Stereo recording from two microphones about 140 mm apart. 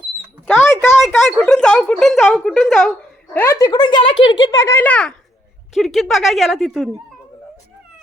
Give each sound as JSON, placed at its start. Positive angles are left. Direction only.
{"t": 0.4, "sound": "a sound", "side_deg": 15}
{"t": 0.9, "sound": "a woman's voice", "side_deg": 0}
{"t": 3.3, "sound": "speech", "side_deg": 20}
{"t": 4.6, "sound": "a child's voice", "side_deg": 15}